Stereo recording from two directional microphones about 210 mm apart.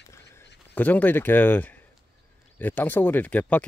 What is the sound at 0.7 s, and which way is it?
Speech, 10° left (ahead or behind).